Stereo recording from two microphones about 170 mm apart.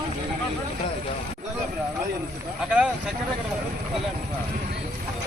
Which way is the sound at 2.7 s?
5° right (ahead or behind).